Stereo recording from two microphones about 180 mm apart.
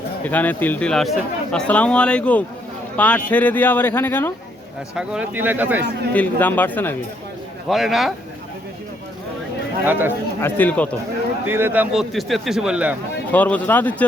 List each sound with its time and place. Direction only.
0.3 s speech: 10° left (ahead or behind)
4.9 s a man's voice: 5° right (ahead or behind)
6.1 s speech: 10° left (ahead or behind)
7.7 s a man's voice: centre (ahead or behind)
9.8 s a man's voice: 10° right (ahead or behind)
10.4 s speech: 10° left (ahead or behind)
11.4 s a man's voice: 10° right (ahead or behind)
13.3 s speech: 10° left (ahead or behind)